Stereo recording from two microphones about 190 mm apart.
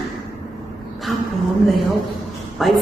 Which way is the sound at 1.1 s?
Centre (ahead or behind).